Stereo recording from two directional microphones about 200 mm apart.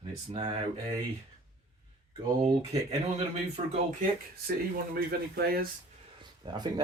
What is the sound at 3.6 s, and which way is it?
Speech, 30° right (ahead or behind).